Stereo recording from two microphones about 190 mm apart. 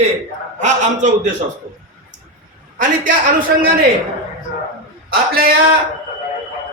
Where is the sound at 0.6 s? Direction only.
40° right (ahead or behind).